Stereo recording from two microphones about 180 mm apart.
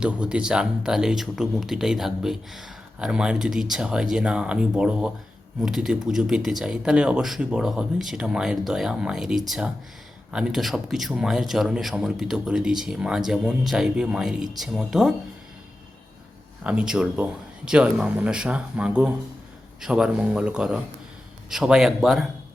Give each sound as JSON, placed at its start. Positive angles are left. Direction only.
{"t": 0.0, "sound": "speech", "side_deg": -5}
{"t": 16.6, "sound": "speech", "side_deg": -5}